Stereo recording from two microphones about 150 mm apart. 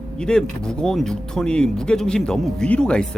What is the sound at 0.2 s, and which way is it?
Speech, 5° left (ahead or behind).